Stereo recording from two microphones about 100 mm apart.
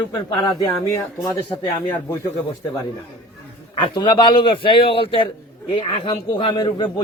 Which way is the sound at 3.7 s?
50° left (ahead or behind).